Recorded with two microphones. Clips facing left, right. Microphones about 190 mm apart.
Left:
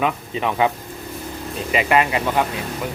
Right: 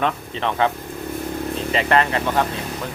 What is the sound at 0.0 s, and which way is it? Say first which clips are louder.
Speech: left 1 dB; 10° left (ahead or behind).